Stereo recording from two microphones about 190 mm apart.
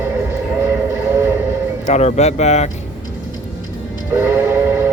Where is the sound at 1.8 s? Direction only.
35° left (ahead or behind).